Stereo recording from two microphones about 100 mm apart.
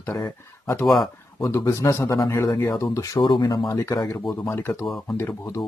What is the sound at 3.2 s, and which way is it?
A man's voice, 45° left (ahead or behind).